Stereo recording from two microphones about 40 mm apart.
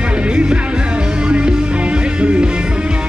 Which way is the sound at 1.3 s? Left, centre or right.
Right.